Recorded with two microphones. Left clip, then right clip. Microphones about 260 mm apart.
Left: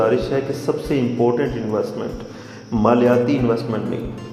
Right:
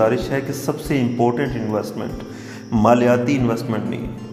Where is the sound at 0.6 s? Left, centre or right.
Right.